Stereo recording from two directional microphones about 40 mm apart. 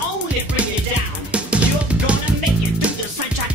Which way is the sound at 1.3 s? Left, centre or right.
Right.